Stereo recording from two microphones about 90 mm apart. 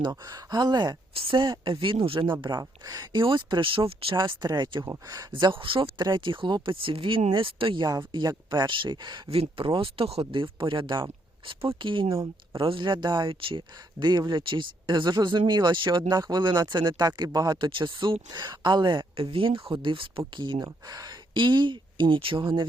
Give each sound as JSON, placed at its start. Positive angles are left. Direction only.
{"t": 0.0, "sound": "speech", "side_deg": -50}
{"t": 1.1, "sound": "a woman's voice", "side_deg": -80}
{"t": 1.6, "sound": "speech", "side_deg": -70}
{"t": 2.6, "sound": "speech", "side_deg": -45}
{"t": 4.3, "sound": "speech", "side_deg": -55}
{"t": 5.3, "sound": "speech", "side_deg": -70}
{"t": 8.1, "sound": "speech", "side_deg": -55}
{"t": 11.4, "sound": "speech", "side_deg": -80}
{"t": 19.1, "sound": "speech", "side_deg": -80}
{"t": 20.6, "sound": "speech", "side_deg": -40}
{"t": 21.3, "sound": "speech", "side_deg": -60}